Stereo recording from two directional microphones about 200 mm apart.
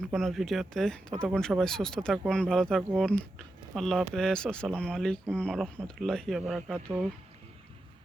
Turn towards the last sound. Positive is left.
turn(degrees=-5)  # may be behind; listen again after turning